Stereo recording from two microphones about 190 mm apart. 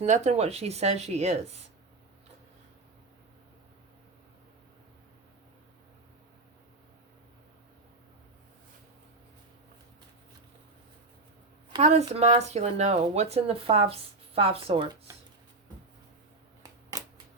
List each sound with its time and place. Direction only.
0.0 s speech: 40° right (ahead or behind)
11.8 s speech: 35° right (ahead or behind)